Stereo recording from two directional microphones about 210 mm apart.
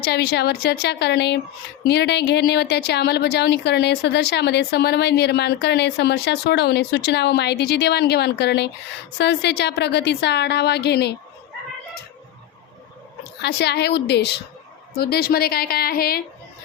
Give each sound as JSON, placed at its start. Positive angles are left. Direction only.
{"t": 0.0, "sound": "speech", "side_deg": 50}
{"t": 13.4, "sound": "speech", "side_deg": 50}